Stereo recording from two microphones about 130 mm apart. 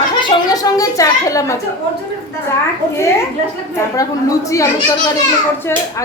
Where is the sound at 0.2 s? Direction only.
35° left (ahead or behind).